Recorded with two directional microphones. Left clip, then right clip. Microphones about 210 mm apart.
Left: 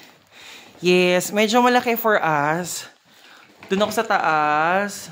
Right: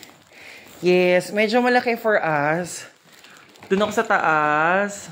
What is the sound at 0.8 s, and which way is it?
Speech, 65° left (ahead or behind).